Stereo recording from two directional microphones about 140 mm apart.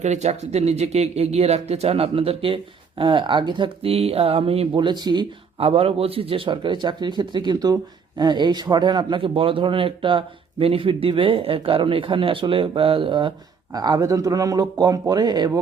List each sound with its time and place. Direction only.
0.0 s a man's voice: 55° right (ahead or behind); by 5.2 s 30° right (ahead or behind)
5.5 s a man's voice: 45° right (ahead or behind)